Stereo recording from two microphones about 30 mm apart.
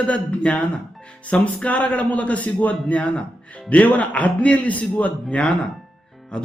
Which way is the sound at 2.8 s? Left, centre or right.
Left.